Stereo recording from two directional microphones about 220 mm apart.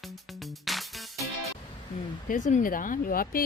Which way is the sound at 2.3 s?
35° left (ahead or behind).